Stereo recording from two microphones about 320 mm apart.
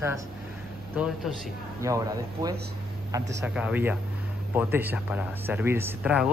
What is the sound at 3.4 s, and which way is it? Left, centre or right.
Speech, centre.